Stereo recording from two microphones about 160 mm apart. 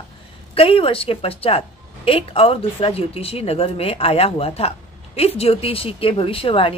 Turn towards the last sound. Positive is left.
turn(degrees=35)  # may be behind; listen again after turning